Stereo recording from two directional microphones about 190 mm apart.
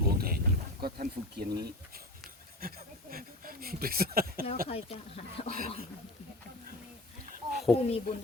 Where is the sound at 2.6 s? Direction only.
50° right (ahead or behind).